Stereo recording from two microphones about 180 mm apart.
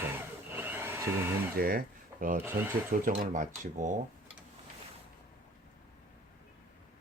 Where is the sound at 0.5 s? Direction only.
10° right (ahead or behind).